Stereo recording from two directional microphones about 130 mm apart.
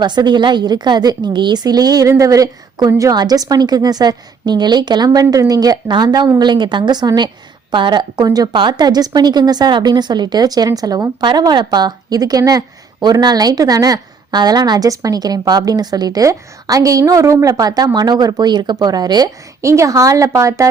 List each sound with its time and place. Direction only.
0.0 s a woman's voice: 35° right (ahead or behind)